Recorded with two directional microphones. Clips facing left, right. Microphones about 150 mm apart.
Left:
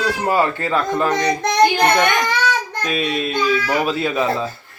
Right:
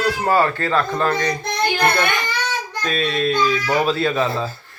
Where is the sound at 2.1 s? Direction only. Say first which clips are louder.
Left 5 dB; 70° left (ahead or behind).